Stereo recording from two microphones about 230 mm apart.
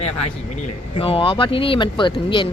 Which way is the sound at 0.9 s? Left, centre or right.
Left.